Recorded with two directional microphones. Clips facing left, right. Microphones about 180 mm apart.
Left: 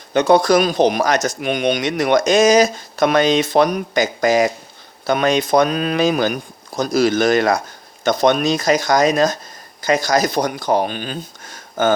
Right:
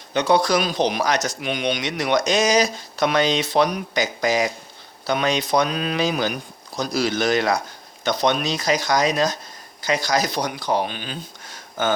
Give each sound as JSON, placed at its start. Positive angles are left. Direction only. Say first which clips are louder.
{"t": 0.1, "sound": "speech", "louder": "left 5 dB", "side_deg": 50}